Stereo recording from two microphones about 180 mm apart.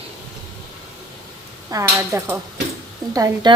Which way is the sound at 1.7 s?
15° right (ahead or behind).